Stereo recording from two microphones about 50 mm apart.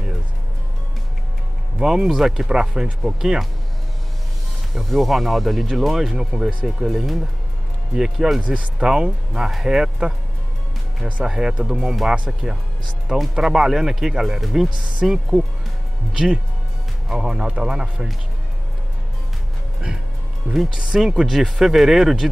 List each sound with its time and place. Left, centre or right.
1.8 s speech: centre
4.7 s speech: centre
8.4 s speech: right
9.4 s speech: centre
11.2 s speech: centre
14.8 s speech: centre
20.5 s speech: centre